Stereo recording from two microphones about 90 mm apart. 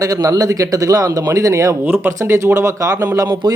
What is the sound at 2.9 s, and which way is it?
Speech, 20° right (ahead or behind).